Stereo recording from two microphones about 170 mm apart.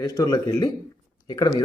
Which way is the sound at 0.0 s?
20° left (ahead or behind).